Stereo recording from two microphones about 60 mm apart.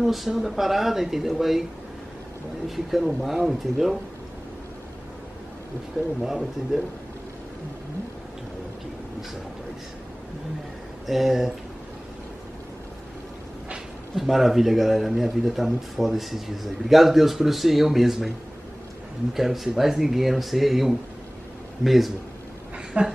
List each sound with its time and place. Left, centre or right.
0.0 s speech: centre
2.7 s speech: centre
6.2 s speech: centre
11.1 s speech: centre
14.1 s speech: centre
19.3 s speech: centre
23.0 s speech: centre